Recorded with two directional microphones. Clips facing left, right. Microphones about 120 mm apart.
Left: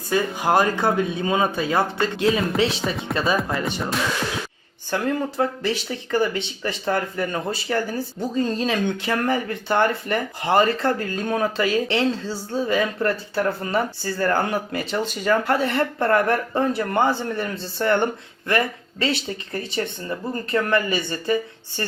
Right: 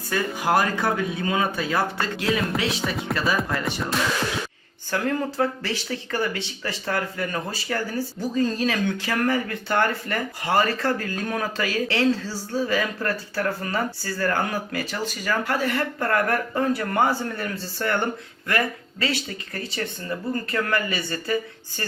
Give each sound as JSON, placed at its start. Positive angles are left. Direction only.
{"t": 0.1, "sound": "speech", "side_deg": 20}
{"t": 3.8, "sound": "music", "side_deg": 0}
{"t": 4.9, "sound": "speech", "side_deg": 20}